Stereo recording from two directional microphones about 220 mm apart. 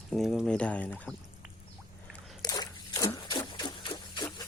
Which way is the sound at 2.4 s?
20° left (ahead or behind).